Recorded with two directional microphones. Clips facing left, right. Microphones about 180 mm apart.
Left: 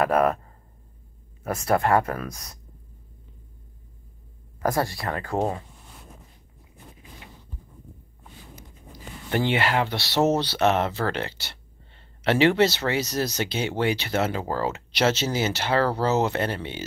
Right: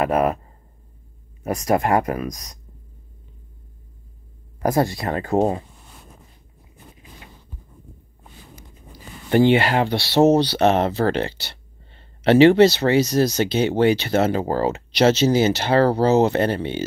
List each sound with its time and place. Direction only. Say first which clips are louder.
0.0 s speech: right 1 dB; 5° right (ahead or behind)
1.4 s speech: right 3 dB; 15° right (ahead or behind)
4.6 s speech: right 5 dB; 20° right (ahead or behind)
9.3 s speech: right 8 dB; 30° right (ahead or behind)
10.3 s speech: right 5 dB; 35° right (ahead or behind)